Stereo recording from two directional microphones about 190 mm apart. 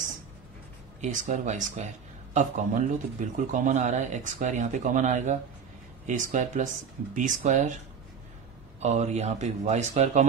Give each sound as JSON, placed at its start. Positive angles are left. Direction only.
{"t": 1.0, "sound": "speech", "side_deg": -40}
{"t": 8.8, "sound": "speech", "side_deg": -35}